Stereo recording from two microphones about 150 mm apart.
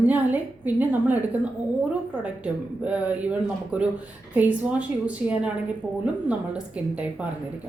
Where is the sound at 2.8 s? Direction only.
10° right (ahead or behind).